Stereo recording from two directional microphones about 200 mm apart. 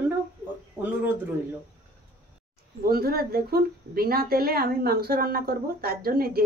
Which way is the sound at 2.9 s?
50° right (ahead or behind).